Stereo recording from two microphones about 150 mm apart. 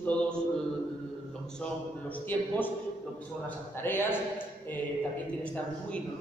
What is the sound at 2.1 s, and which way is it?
Speech, 10° left (ahead or behind).